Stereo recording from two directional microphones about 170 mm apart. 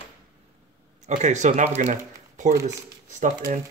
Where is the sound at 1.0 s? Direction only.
45° right (ahead or behind).